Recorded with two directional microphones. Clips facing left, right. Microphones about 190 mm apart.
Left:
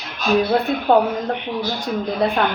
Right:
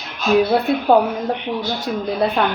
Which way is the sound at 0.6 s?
10° right (ahead or behind).